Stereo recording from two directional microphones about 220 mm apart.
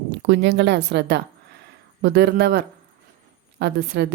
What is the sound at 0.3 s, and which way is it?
A woman's voice, 50° right (ahead or behind).